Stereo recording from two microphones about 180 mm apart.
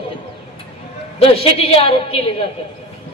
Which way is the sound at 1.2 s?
35° left (ahead or behind).